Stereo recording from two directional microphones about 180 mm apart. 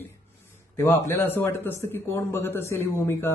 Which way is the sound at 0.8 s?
15° left (ahead or behind).